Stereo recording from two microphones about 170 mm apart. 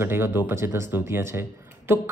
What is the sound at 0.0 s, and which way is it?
Speech, 15° right (ahead or behind).